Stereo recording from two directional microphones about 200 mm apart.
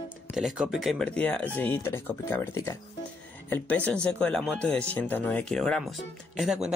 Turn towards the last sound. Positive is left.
turn(degrees=-5)  # may be behind; listen again after turning